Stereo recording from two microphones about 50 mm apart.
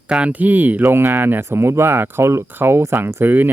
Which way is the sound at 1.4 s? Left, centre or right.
Right.